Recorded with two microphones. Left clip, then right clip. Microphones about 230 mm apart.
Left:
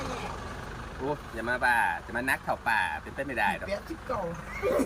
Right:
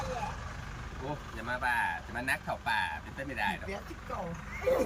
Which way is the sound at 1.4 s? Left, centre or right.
Left.